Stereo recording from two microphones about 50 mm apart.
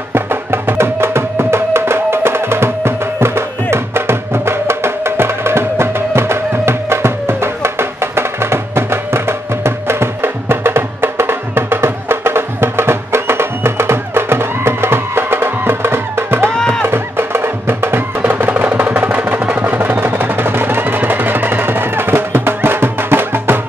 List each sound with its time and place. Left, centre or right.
0.1 s music: right
16.5 s music: centre
16.8 s music: right
18.2 s music: right